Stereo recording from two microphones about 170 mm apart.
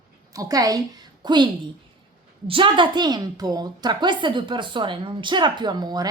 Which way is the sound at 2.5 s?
30° right (ahead or behind).